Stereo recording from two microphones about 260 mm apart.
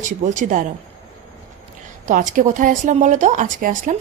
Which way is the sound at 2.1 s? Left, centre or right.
Right.